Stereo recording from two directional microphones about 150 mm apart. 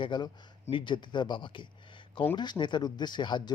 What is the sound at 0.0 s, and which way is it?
Speech, 30° left (ahead or behind).